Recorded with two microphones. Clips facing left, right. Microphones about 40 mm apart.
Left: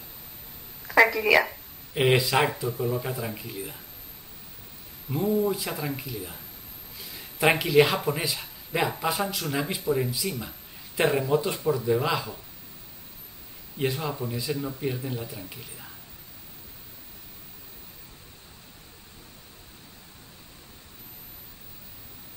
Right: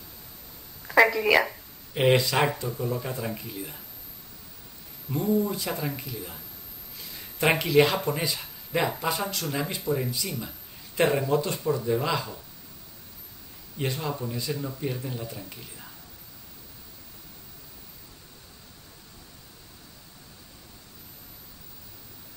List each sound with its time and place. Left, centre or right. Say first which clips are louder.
0.8 s speech: even; centre
5.1 s speech: left 1 dB; centre
13.7 s speech: left 2 dB; centre